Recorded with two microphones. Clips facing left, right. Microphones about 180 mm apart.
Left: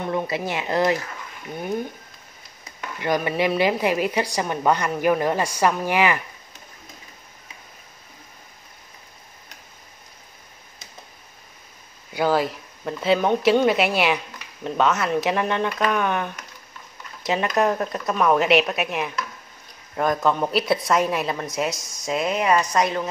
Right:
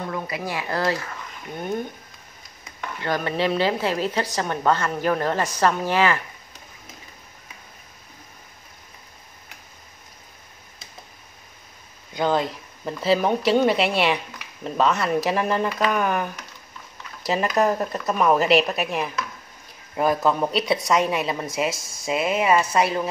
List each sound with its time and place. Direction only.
0.1 s speech: 25° left (ahead or behind)
3.0 s a woman's voice: 15° left (ahead or behind)
12.1 s speech: 5° left (ahead or behind)
21.6 s speech: 25° right (ahead or behind)
22.0 s speech: 5° right (ahead or behind)